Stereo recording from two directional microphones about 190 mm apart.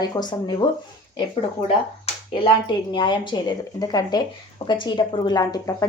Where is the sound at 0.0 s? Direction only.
20° left (ahead or behind).